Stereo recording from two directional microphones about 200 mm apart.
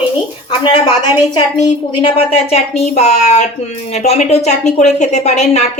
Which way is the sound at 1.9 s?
25° left (ahead or behind).